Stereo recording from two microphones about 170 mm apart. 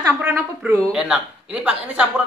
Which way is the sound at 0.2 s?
15° right (ahead or behind).